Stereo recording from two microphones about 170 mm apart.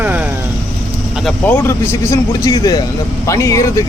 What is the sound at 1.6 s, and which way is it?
Speech, 15° left (ahead or behind).